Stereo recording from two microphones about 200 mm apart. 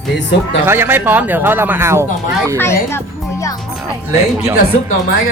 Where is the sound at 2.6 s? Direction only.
10° left (ahead or behind).